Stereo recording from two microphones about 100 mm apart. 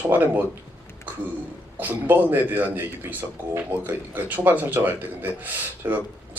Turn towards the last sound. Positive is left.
turn(degrees=-20)  # may be behind; listen again after turning